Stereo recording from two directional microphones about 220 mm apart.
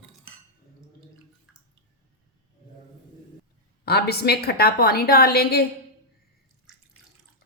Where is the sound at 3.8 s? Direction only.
45° left (ahead or behind).